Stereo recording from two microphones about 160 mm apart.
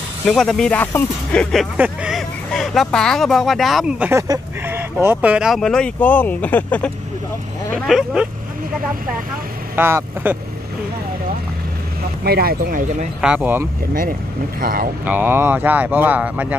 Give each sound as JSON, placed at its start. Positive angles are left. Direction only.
{"t": 0.3, "sound": "speech", "side_deg": 5}
{"t": 4.1, "sound": "speech", "side_deg": -20}
{"t": 7.7, "sound": "speech", "side_deg": 0}
{"t": 9.8, "sound": "speech", "side_deg": -15}
{"t": 12.3, "sound": "speech", "side_deg": -70}
{"t": 13.2, "sound": "speech", "side_deg": -10}
{"t": 14.6, "sound": "speech", "side_deg": -65}
{"t": 15.0, "sound": "speech", "side_deg": -10}